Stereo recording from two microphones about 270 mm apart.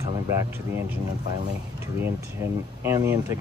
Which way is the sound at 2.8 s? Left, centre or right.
Centre.